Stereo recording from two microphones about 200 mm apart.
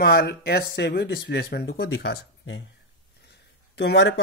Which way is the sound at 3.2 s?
55° left (ahead or behind).